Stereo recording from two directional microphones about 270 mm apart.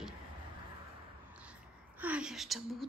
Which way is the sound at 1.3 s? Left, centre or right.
Centre.